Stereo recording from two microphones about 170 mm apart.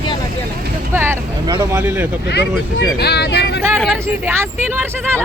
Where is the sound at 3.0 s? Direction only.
75° left (ahead or behind).